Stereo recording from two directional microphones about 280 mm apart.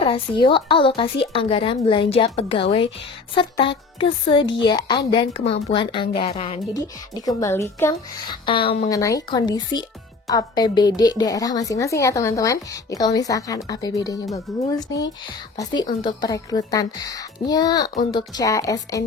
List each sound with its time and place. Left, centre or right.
0.0 s a woman's voice: centre